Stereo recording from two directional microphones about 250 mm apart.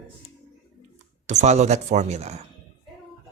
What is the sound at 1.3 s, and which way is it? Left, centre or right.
Speech, right.